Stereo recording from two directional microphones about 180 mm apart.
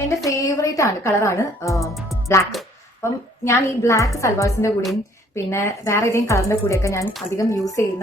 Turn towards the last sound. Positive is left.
turn(degrees=15)  # may be behind; listen again after turning